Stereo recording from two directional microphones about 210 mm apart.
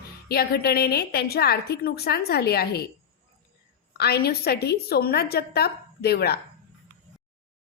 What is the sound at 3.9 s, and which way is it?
A woman's voice, 50° left (ahead or behind).